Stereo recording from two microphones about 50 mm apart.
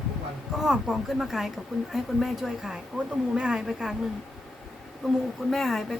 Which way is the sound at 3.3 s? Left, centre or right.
Centre.